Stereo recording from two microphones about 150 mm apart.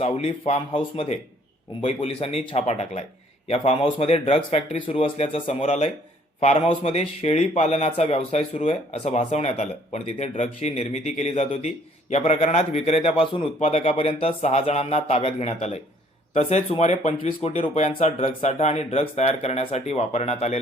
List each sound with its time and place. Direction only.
0.0 s speech: 45° left (ahead or behind)